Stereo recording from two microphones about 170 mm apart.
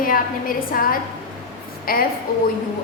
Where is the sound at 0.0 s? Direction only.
55° left (ahead or behind).